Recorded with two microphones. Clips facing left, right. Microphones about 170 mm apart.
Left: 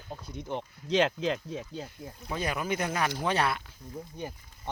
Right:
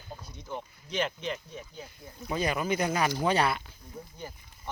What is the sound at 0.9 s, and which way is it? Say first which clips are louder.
Speech: left 6 dB; 90° left.